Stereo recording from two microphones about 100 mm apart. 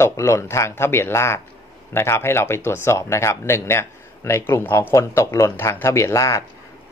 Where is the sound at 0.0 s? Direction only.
25° left (ahead or behind).